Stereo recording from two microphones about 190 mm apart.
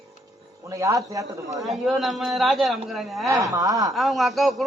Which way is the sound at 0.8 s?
15° right (ahead or behind).